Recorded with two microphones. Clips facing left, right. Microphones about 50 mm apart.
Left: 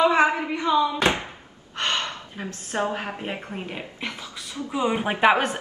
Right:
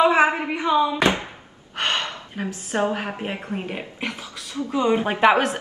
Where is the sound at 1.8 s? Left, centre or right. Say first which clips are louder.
Right 2 dB; right.